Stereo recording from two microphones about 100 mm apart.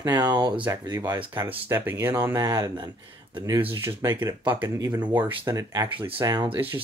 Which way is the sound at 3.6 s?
25° right (ahead or behind).